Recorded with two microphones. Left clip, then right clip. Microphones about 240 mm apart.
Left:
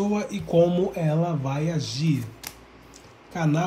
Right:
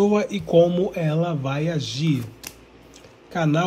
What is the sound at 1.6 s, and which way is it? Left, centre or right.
Speech, centre.